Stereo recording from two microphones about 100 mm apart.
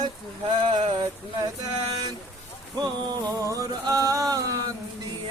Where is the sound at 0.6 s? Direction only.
90° right.